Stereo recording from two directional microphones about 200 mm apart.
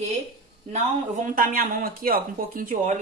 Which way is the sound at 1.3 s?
45° right (ahead or behind).